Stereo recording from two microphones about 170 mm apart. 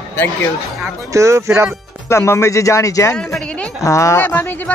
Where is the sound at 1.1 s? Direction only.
15° right (ahead or behind).